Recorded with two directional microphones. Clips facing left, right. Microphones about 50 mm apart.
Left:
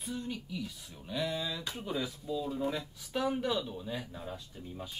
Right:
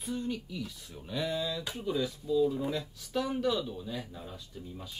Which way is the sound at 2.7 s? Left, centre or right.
Centre.